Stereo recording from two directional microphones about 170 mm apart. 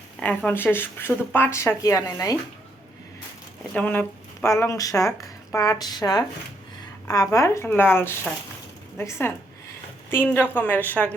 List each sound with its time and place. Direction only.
0.2 s speech: 10° left (ahead or behind)
3.8 s speech: 10° left (ahead or behind)
10.5 s speech: 10° left (ahead or behind)